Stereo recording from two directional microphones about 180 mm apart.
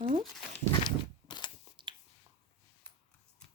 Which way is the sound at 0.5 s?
25° left (ahead or behind).